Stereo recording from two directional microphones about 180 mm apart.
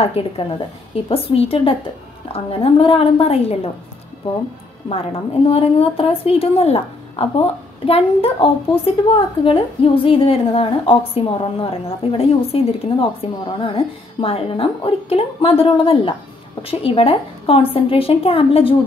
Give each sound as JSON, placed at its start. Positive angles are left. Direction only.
{"t": 0.0, "sound": "a woman's voice", "side_deg": 35}
{"t": 4.8, "sound": "a woman's voice", "side_deg": 35}